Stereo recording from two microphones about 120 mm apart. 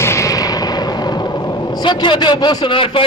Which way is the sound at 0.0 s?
25° left (ahead or behind).